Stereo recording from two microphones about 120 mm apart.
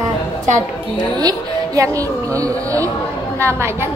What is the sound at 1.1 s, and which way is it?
A woman's voice, 30° right (ahead or behind).